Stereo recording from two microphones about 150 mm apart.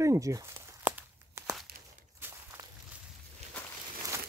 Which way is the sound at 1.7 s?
90° right.